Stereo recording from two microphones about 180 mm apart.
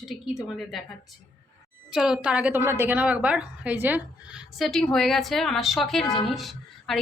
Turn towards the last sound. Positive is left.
turn(degrees=0)  # may be behind; listen again after turning